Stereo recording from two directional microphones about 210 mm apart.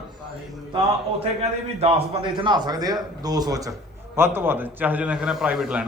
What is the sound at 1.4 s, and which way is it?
A man's voice, 30° right (ahead or behind).